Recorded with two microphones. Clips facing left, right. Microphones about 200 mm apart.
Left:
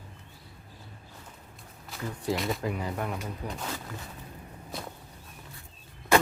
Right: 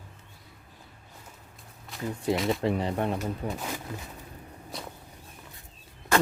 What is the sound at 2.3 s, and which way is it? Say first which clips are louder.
Speech: right 3 dB; centre (ahead or behind).